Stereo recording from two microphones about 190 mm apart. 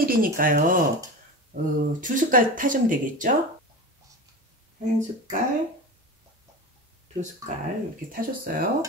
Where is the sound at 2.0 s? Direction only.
45° right (ahead or behind).